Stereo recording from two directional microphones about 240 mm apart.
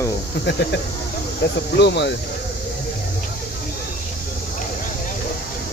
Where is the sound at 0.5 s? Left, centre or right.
Left.